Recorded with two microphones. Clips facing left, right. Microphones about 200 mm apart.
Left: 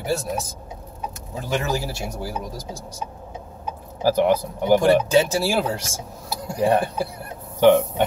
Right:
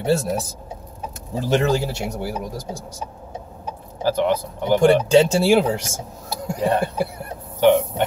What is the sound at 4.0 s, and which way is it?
Speech, 10° left (ahead or behind).